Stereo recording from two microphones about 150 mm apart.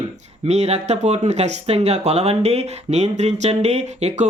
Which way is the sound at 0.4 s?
45° right (ahead or behind).